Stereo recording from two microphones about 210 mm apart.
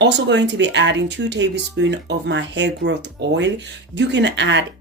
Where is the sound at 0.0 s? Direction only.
55° right (ahead or behind).